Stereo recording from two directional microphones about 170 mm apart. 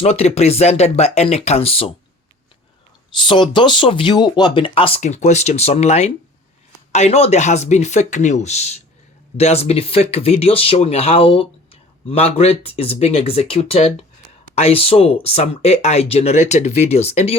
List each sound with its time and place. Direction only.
0.0 s speech: 40° left (ahead or behind)
3.2 s speech: 30° left (ahead or behind)